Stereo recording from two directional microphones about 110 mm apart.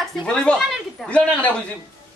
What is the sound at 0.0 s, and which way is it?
Speech, 5° left (ahead or behind).